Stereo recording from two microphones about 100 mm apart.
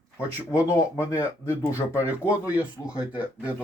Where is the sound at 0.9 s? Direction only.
30° left (ahead or behind).